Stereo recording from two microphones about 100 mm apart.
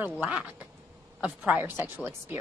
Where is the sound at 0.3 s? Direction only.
15° right (ahead or behind).